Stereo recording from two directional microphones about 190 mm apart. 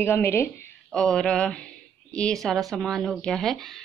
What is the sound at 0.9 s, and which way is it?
Speech, centre (ahead or behind).